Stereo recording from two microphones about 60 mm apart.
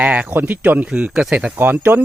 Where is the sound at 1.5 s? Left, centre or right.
Right.